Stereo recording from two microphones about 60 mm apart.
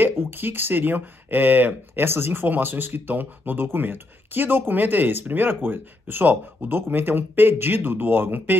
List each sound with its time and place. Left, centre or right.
0.0 s speech: right